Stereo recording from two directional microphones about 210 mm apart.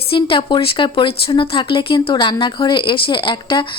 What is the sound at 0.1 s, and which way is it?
A woman's voice, 25° left (ahead or behind).